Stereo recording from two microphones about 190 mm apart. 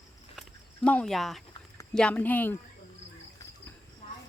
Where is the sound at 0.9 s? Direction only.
5° left (ahead or behind).